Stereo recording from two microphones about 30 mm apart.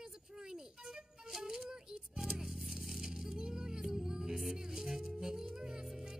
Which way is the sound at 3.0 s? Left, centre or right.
Centre.